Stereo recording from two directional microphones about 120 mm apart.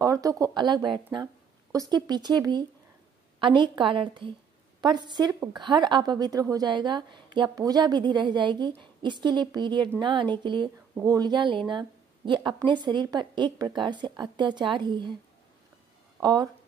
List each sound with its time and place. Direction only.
0.0 s a woman's voice: 30° right (ahead or behind)
16.2 s speech: 35° right (ahead or behind)